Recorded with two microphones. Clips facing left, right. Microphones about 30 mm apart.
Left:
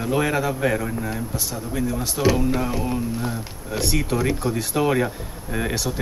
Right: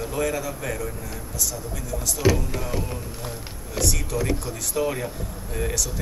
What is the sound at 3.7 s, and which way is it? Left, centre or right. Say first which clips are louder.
Speech: left 3 dB; left.